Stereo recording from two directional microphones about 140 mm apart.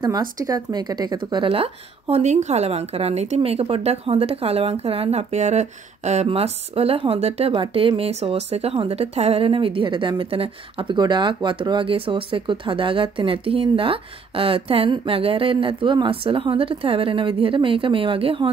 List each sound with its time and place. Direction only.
0.0 s a woman's voice: 30° right (ahead or behind)